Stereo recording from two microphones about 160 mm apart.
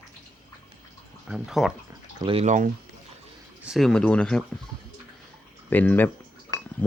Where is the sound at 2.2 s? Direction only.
35° right (ahead or behind).